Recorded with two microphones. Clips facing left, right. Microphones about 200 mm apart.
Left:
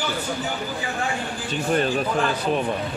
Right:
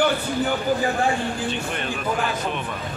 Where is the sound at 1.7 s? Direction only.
35° left (ahead or behind).